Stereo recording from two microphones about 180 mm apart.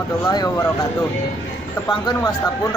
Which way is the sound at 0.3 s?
20° left (ahead or behind).